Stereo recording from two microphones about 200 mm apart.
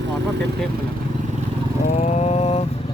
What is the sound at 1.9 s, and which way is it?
Vehicle, 35° left (ahead or behind).